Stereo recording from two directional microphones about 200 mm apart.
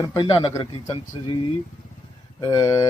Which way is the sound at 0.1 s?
25° left (ahead or behind).